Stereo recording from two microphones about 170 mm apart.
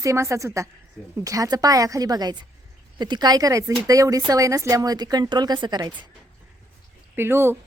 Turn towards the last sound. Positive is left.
turn(degrees=-15)  # may be behind; listen again after turning